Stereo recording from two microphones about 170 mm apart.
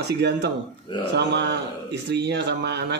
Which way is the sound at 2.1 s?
85° right.